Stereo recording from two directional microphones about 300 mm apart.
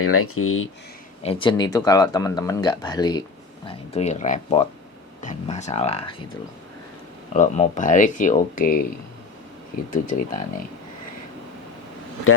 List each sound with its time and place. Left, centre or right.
0.0 s speech: left
1.2 s speech: centre
7.3 s speech: left
9.9 s speech: left